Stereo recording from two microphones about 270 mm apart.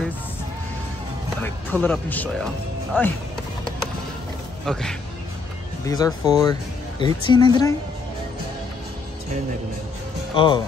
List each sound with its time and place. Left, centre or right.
1.4 s speech: centre
4.6 s speech: centre
5.9 s speech: centre
10.3 s speech: centre